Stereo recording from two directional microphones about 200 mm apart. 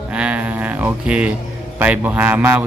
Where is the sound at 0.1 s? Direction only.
5° right (ahead or behind).